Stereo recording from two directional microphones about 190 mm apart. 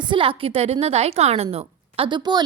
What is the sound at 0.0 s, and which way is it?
A woman's voice, 25° right (ahead or behind).